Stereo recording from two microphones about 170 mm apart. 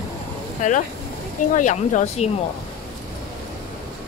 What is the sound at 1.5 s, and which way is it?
Speech, 45° left (ahead or behind).